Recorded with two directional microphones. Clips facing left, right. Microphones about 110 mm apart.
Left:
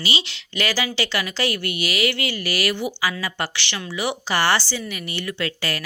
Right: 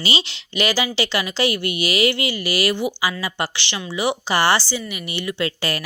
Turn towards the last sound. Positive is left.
turn(degrees=-20)  # may be behind; listen again after turning